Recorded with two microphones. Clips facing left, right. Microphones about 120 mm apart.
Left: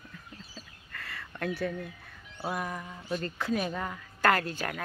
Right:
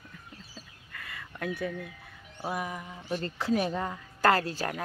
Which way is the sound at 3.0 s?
30° right (ahead or behind).